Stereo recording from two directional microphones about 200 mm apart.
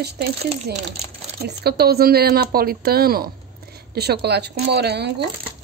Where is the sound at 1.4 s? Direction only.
55° right (ahead or behind).